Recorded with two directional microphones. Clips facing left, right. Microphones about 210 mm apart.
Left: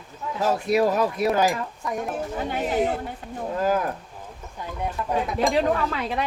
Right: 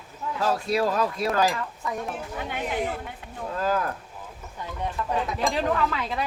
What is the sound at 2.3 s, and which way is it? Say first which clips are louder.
Speech: left 5 dB; 40° left (ahead or behind).